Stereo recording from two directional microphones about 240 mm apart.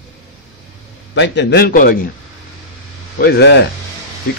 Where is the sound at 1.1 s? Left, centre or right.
Left.